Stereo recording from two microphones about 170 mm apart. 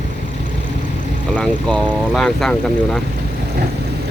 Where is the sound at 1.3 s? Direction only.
5° left (ahead or behind).